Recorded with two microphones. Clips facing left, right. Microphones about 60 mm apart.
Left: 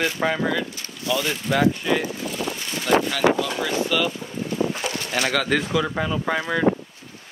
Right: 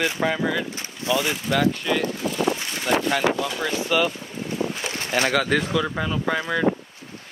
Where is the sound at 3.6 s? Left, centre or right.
Centre.